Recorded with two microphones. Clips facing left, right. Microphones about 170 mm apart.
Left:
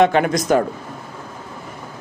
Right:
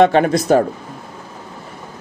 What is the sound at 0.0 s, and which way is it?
Speech, 30° right (ahead or behind).